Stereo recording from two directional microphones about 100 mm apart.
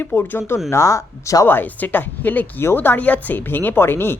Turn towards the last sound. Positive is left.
turn(degrees=20)  # may be behind; listen again after turning